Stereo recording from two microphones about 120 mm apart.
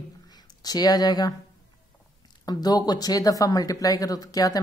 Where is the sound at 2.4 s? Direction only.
35° left (ahead or behind).